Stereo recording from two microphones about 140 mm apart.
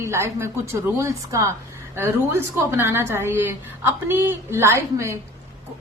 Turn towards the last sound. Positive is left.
turn(degrees=-20)  # may be behind; listen again after turning